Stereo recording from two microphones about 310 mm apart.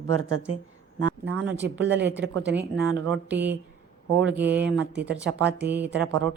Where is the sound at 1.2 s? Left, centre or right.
Right.